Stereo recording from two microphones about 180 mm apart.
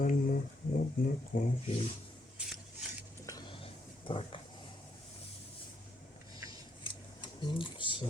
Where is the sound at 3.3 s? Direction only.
25° left (ahead or behind).